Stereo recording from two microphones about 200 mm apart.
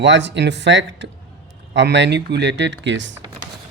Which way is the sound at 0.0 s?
60° right (ahead or behind).